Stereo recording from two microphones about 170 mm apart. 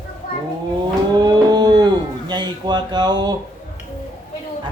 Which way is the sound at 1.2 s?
25° right (ahead or behind).